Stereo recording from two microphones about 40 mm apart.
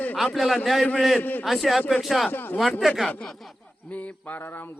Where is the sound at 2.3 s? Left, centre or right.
Left.